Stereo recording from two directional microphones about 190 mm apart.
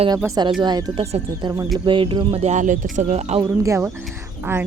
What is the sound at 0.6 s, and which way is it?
Speech, 20° right (ahead or behind).